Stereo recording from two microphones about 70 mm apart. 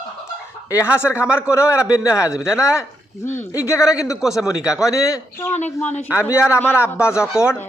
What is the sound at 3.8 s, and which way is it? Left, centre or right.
A man's voice, centre.